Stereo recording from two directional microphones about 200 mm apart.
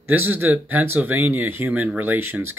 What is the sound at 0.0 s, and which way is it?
Speech, 10° right (ahead or behind).